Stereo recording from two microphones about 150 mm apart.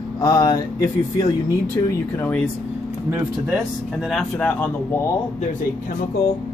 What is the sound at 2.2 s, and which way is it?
Speech, 10° left (ahead or behind).